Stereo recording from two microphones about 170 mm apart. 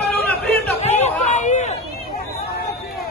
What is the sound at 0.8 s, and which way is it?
Chatter, 40° left (ahead or behind).